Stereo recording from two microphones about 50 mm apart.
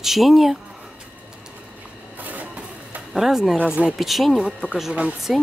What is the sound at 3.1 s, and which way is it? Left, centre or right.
Speech, centre.